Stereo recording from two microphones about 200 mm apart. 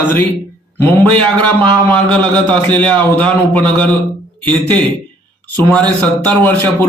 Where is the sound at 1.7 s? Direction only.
25° right (ahead or behind).